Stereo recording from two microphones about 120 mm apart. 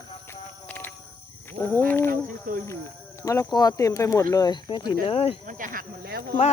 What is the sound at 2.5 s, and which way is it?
Speech, 90° right.